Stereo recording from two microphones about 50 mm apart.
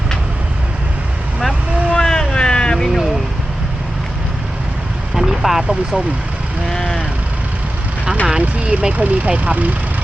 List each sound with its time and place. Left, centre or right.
2.0 s vehicle: centre
5.1 s vehicle: centre
6.7 s vehicle: centre
8.3 s speech: right